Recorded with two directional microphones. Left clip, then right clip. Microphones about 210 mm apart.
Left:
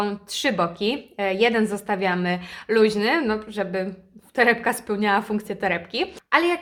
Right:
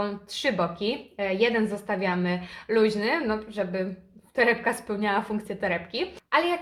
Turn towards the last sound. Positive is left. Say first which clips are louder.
# left 4 dB
turn(degrees=35)  # may be behind; listen again after turning